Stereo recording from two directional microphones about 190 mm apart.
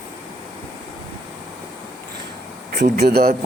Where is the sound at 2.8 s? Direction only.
55° right (ahead or behind).